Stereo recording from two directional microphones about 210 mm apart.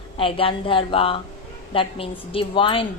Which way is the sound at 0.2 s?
25° left (ahead or behind).